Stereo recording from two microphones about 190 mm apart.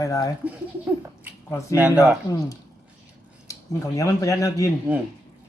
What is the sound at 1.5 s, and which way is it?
Speech, 15° left (ahead or behind).